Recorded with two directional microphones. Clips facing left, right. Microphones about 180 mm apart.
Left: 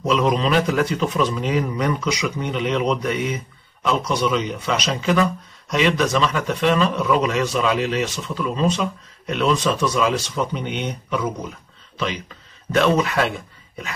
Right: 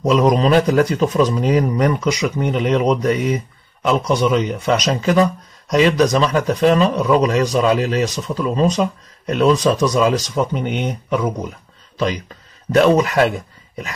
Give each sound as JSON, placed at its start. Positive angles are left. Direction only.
{"t": 0.0, "sound": "speech", "side_deg": -40}
{"t": 12.7, "sound": "speech", "side_deg": -40}